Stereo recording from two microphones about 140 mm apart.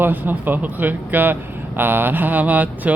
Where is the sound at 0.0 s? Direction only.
15° right (ahead or behind).